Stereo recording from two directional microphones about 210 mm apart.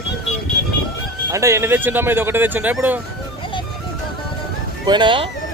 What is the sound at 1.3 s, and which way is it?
Speech, 15° right (ahead or behind).